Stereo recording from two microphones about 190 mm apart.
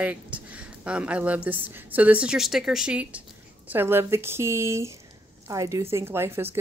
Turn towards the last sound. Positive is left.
turn(degrees=-10)  # may be behind; listen again after turning